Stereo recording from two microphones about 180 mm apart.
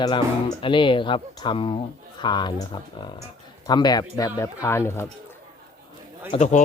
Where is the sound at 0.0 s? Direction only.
25° left (ahead or behind).